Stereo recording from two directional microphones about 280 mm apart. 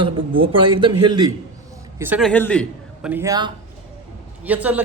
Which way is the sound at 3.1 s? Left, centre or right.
Centre.